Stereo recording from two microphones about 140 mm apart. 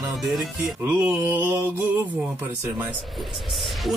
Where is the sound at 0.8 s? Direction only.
15° right (ahead or behind).